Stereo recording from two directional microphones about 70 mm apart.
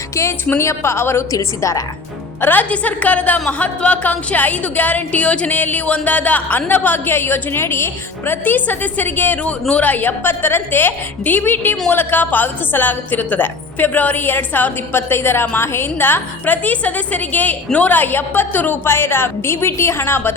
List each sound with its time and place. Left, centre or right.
0.5 s a woman's voice: left
1.3 s a woman's voice: left
2.4 s a woman's voice: left